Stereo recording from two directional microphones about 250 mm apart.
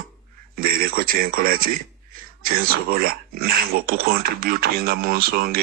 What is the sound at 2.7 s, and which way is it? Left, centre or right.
Speech, right.